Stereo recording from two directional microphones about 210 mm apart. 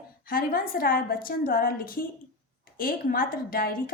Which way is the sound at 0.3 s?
45° left (ahead or behind).